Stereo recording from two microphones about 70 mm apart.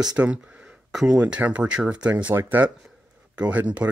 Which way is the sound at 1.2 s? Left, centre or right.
Centre.